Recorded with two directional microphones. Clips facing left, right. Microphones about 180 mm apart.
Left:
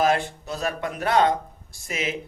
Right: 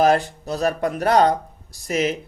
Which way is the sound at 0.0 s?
40° right (ahead or behind).